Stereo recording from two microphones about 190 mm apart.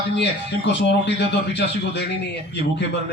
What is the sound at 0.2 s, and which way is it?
A man's voice, 65° left (ahead or behind).